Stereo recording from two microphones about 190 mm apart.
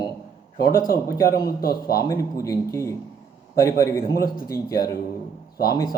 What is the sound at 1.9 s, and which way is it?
Speech, 15° left (ahead or behind).